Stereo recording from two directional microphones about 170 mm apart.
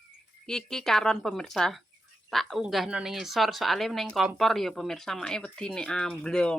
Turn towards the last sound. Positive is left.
turn(degrees=5)  # may be behind; listen again after turning